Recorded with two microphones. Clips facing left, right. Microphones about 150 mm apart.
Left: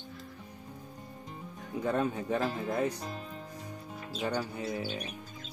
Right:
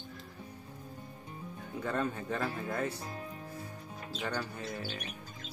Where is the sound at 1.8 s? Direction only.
15° left (ahead or behind).